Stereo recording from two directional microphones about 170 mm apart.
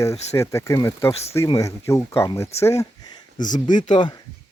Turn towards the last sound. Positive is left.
turn(degrees=25)  # may be behind; listen again after turning